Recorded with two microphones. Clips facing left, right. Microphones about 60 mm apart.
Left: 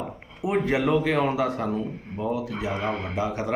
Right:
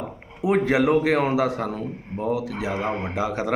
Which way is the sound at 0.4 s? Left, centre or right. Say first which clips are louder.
Right 4 dB; right.